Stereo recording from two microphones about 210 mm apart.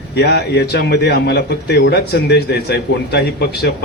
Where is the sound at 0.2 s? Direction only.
50° left (ahead or behind).